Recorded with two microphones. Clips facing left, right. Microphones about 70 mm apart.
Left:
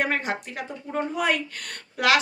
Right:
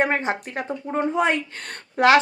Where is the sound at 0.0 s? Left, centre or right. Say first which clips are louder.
Right 4 dB; right.